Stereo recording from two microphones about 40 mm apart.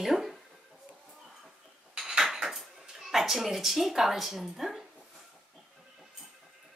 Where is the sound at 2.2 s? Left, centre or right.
Centre.